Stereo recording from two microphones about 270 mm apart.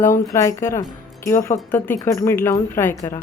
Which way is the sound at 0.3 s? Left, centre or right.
Centre.